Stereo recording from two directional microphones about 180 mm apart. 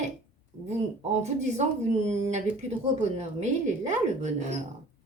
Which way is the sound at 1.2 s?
40° right (ahead or behind).